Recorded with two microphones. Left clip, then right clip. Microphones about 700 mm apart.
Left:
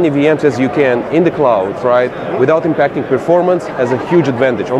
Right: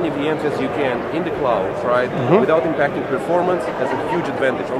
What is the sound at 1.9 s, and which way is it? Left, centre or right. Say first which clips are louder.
Speech: even; left.